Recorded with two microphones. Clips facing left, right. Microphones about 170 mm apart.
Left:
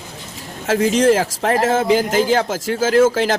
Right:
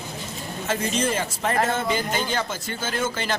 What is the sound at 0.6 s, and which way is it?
A man's voice, 90° left.